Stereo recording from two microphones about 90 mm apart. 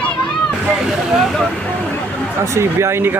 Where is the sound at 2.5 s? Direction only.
30° right (ahead or behind).